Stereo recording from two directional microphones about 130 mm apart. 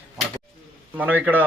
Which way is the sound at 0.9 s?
10° right (ahead or behind).